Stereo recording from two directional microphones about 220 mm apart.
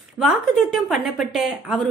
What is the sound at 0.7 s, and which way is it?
A woman's voice, centre (ahead or behind).